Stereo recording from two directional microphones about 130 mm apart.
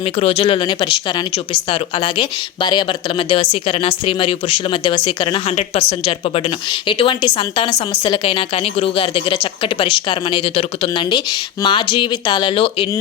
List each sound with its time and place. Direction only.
0.2 s speech: 50° left (ahead or behind)